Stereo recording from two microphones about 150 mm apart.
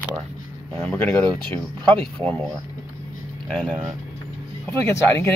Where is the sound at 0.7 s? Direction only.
10° left (ahead or behind).